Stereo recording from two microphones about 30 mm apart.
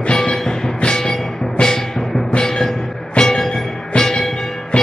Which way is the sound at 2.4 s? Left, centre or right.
Centre.